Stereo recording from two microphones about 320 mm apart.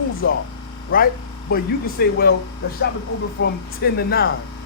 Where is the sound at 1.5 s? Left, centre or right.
Left.